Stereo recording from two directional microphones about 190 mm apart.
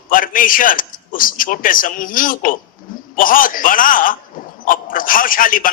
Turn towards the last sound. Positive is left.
turn(degrees=45)  # may be behind; listen again after turning